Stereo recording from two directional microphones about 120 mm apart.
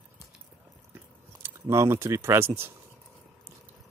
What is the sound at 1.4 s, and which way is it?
Speech, 20° right (ahead or behind).